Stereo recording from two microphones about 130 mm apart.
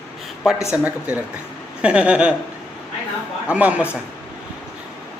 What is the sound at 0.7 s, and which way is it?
Music, 10° right (ahead or behind).